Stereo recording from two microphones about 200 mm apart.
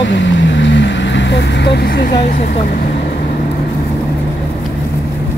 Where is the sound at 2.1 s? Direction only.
35° left (ahead or behind).